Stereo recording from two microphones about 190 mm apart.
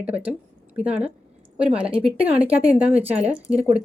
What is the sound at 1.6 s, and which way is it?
Speech, 5° right (ahead or behind).